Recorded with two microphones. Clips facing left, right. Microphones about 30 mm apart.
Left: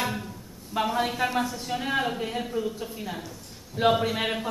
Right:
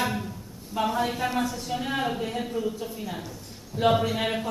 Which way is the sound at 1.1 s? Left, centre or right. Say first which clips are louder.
Left 1 dB; centre.